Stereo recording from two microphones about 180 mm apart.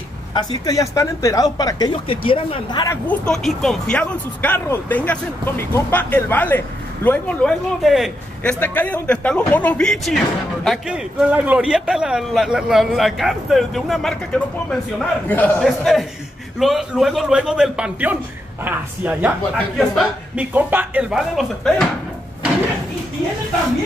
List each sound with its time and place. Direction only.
0.3 s speech: 25° left (ahead or behind)
3.1 s speech: 5° left (ahead or behind)
8.5 s a woman's voice: 10° left (ahead or behind)